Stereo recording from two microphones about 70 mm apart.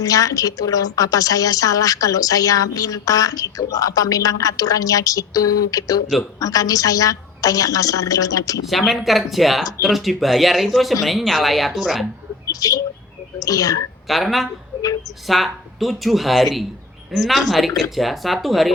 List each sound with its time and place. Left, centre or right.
0.0 s a woman's voice: left
8.9 s speech: centre
12.5 s a woman's voice: left
14.1 s speech: centre
14.8 s a sound: left
15.3 s speech: centre